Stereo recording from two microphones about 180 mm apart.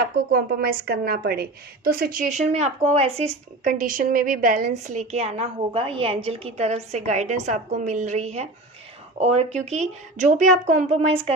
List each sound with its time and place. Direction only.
0.0 s a woman's voice: 60° right (ahead or behind); by 11.3 s 30° right (ahead or behind)